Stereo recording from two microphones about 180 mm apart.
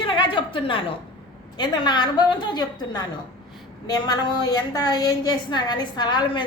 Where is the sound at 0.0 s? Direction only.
30° left (ahead or behind).